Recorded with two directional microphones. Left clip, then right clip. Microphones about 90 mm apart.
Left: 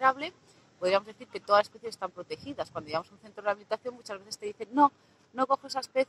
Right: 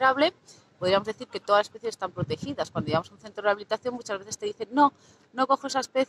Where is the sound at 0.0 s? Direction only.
25° right (ahead or behind).